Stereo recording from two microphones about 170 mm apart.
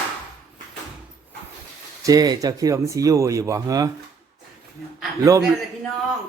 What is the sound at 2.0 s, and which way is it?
Speech, 20° right (ahead or behind).